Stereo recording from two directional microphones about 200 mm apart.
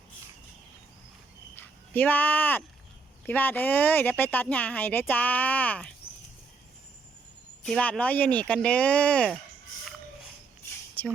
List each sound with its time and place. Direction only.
1.5 s speech: 10° left (ahead or behind)
7.6 s speech: 5° left (ahead or behind)